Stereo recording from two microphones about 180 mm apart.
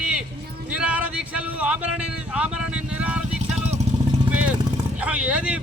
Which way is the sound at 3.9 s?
35° right (ahead or behind).